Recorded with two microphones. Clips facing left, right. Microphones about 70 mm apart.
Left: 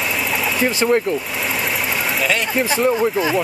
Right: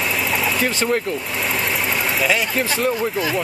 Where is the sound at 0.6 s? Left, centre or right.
Centre.